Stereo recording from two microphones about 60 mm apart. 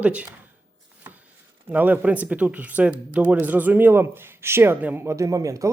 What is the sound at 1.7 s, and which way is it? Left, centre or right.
Speech, right.